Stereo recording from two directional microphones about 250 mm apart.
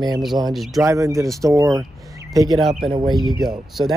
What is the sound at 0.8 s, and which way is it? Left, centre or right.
Speech, centre.